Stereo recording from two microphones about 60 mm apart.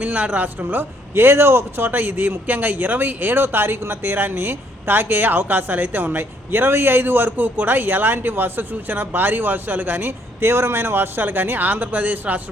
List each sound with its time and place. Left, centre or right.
0.0 s a man's voice: right